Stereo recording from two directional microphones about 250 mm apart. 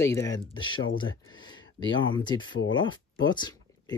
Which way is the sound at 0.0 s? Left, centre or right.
Centre.